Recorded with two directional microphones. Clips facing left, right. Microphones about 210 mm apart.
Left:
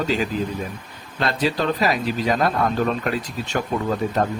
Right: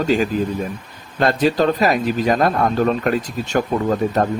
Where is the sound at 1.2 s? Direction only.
50° right (ahead or behind).